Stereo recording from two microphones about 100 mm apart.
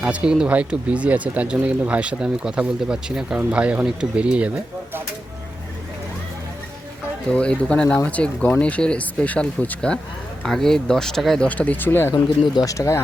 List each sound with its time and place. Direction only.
0.0 s speech: 10° right (ahead or behind)
7.3 s speech: 10° left (ahead or behind)
11.4 s speech: 15° left (ahead or behind)
12.1 s speech: 40° left (ahead or behind)